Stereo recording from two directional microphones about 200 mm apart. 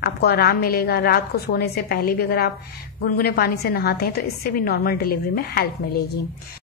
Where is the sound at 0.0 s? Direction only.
55° left (ahead or behind).